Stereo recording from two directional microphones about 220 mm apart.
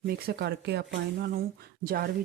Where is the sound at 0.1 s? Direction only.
45° right (ahead or behind).